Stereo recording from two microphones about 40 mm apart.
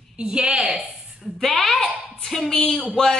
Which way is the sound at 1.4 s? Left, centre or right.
Centre.